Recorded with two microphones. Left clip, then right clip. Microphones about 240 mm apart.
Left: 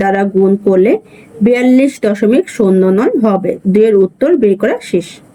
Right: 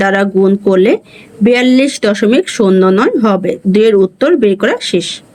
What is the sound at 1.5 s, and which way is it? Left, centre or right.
Speech, right.